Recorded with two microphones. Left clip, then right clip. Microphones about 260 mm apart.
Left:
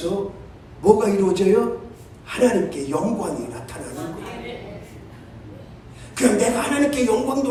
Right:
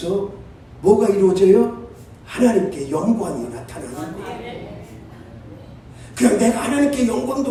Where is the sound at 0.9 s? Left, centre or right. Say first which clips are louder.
Right 2 dB; left.